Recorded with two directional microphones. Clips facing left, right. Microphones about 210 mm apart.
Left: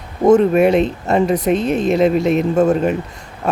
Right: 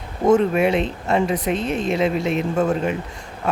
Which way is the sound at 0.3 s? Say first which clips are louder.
Left 5 dB; 45° left (ahead or behind).